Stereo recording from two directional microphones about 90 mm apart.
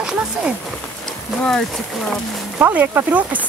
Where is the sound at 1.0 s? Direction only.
5° left (ahead or behind).